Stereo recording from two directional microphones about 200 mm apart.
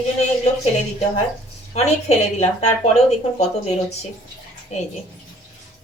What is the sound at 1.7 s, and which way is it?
Speech, 30° left (ahead or behind).